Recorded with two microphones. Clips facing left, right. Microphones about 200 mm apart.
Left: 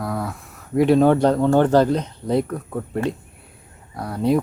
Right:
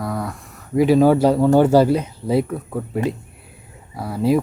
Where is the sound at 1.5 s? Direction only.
10° right (ahead or behind).